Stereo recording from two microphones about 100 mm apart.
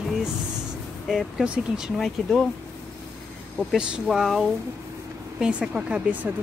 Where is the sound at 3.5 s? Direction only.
5° right (ahead or behind).